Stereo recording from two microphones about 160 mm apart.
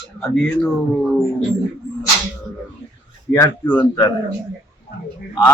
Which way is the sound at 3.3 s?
15° left (ahead or behind).